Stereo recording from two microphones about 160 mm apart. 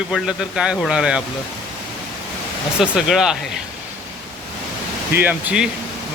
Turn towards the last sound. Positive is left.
turn(degrees=-10)  # may be behind; listen again after turning